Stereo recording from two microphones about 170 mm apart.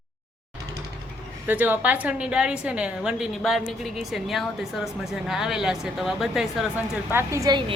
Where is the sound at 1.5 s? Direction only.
10° right (ahead or behind).